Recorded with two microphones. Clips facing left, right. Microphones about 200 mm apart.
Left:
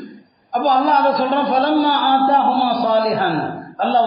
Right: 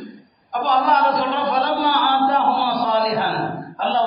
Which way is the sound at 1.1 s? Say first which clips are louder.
Left 4 dB; 45° left (ahead or behind).